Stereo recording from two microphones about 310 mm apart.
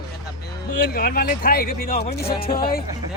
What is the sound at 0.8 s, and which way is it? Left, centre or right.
Speech, left.